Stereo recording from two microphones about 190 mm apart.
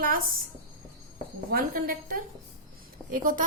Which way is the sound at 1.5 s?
50° right (ahead or behind).